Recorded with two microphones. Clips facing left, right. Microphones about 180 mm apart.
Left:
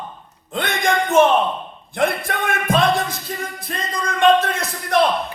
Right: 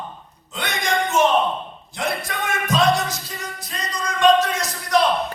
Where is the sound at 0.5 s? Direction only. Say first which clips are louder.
Left 4 dB; 55° left (ahead or behind).